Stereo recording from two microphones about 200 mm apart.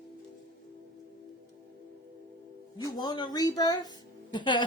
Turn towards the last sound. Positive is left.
turn(degrees=25)  # may be behind; listen again after turning